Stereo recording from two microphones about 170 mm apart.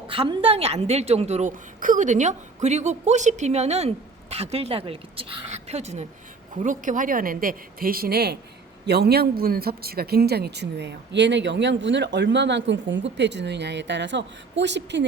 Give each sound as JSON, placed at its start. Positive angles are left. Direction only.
{"t": 0.1, "sound": "a woman's voice", "side_deg": -30}